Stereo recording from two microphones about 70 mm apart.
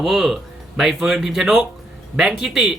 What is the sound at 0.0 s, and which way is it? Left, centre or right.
Speech, centre.